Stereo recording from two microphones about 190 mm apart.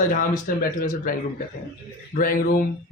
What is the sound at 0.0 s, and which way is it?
A man's voice, 45° left (ahead or behind).